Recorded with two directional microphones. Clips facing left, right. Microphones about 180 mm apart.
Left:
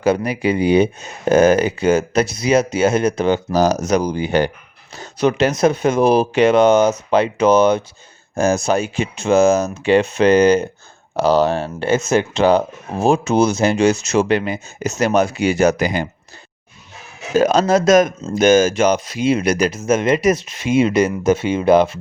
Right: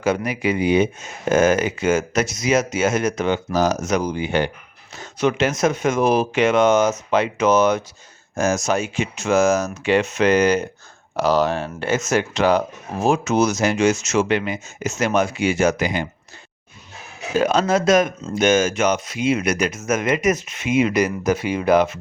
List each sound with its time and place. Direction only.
0.0 s speech: 35° left (ahead or behind)
17.3 s speech: 40° left (ahead or behind)